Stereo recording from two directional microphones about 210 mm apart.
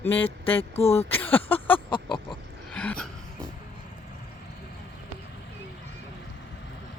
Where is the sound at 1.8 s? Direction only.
25° left (ahead or behind).